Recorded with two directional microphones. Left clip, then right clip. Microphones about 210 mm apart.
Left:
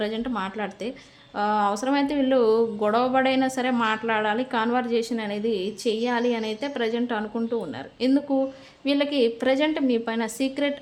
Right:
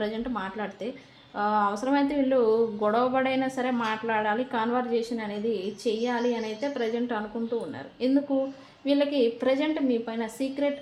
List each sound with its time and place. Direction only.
0.0 s speech: 30° left (ahead or behind)